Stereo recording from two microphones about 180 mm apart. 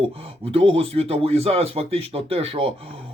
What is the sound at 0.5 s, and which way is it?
Speech, 30° right (ahead or behind).